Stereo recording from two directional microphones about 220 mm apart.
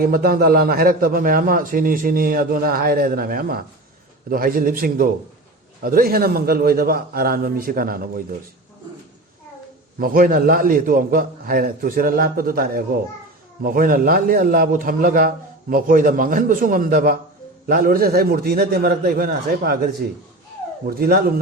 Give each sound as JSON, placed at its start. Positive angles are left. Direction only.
{"t": 0.0, "sound": "a man's voice", "side_deg": -40}
{"t": 10.0, "sound": "a man's voice", "side_deg": -40}